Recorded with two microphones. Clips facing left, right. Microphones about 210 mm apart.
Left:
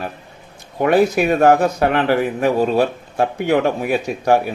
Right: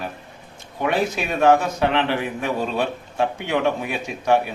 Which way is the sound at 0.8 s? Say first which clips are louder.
Left 8 dB; 45° left (ahead or behind).